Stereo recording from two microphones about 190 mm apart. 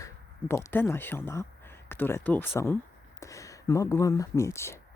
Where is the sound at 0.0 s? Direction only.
15° left (ahead or behind).